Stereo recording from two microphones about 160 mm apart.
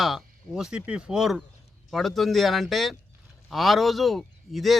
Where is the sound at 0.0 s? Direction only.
Centre (ahead or behind).